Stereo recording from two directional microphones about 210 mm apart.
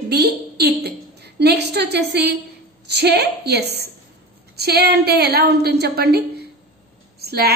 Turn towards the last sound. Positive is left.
turn(degrees=-50)  # may be behind; listen again after turning